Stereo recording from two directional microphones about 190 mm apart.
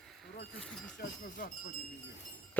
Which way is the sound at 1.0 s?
45° left (ahead or behind).